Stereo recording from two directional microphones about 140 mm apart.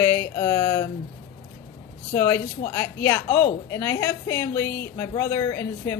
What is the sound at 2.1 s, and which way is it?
A woman's voice, 15° left (ahead or behind).